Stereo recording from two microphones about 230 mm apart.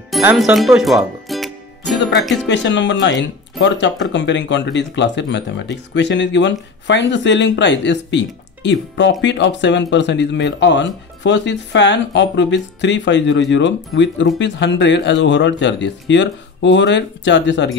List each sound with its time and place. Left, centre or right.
0.1 s music: centre
2.4 s speech: left